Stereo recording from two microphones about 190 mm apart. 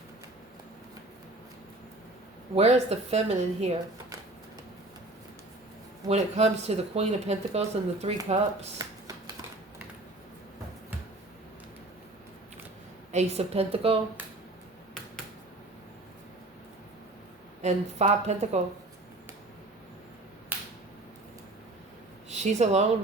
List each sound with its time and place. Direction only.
2.6 s speech: 35° right (ahead or behind)
6.1 s speech: 35° right (ahead or behind)
8.8 s computer keyboard: 20° right (ahead or behind)
13.1 s speech: 35° right (ahead or behind)
17.6 s speech: 35° right (ahead or behind)
20.5 s finger snapping: 10° right (ahead or behind)
22.3 s a woman's voice: 35° right (ahead or behind)